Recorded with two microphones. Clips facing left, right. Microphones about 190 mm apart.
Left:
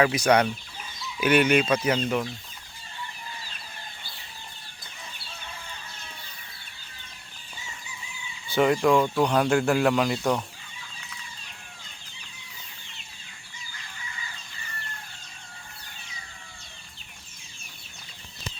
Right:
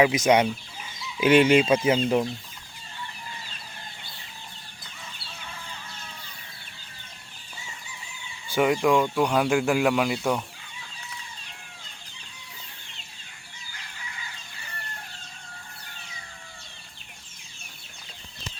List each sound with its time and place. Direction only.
0.0 s chicken: 20° right (ahead or behind)
8.4 s speech: 10° right (ahead or behind)